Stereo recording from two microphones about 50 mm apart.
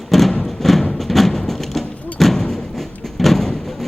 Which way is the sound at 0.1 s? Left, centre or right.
Centre.